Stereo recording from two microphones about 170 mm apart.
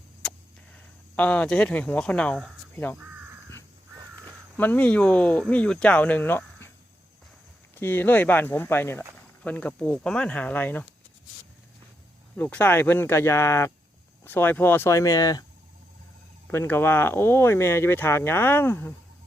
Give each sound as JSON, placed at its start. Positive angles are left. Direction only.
{"t": 0.2, "sound": "a sound", "side_deg": 5}
{"t": 2.7, "sound": "speech", "side_deg": 10}
{"t": 4.5, "sound": "speech", "side_deg": 10}
{"t": 7.8, "sound": "speech", "side_deg": 10}
{"t": 12.4, "sound": "speech", "side_deg": 10}
{"t": 16.5, "sound": "speech", "side_deg": 15}